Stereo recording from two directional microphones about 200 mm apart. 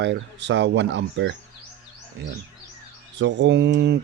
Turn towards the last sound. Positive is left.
turn(degrees=-55)  # may be behind; listen again after turning